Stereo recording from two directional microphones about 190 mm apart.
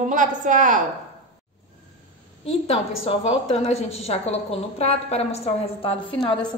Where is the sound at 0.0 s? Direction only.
45° right (ahead or behind).